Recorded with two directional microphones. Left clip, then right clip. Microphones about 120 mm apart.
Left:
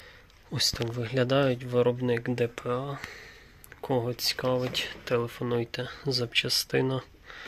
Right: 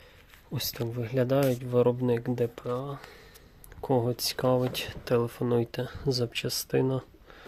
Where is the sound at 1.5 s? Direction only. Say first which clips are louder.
Right 1 dB; 35° right (ahead or behind).